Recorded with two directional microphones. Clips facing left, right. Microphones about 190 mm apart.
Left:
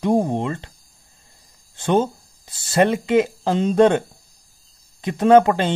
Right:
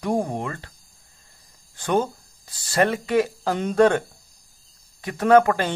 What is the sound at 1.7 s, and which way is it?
Speech, 25° left (ahead or behind).